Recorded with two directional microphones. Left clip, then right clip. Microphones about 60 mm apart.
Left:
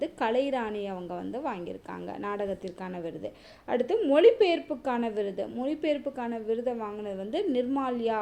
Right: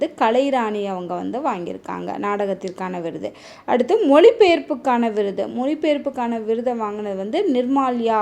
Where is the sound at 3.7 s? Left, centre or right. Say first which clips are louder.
Right 10 dB; right.